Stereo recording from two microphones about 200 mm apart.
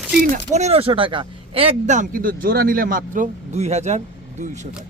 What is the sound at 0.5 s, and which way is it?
Speech, 30° right (ahead or behind).